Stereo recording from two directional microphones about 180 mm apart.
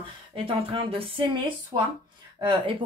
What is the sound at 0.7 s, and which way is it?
Speech, 30° right (ahead or behind).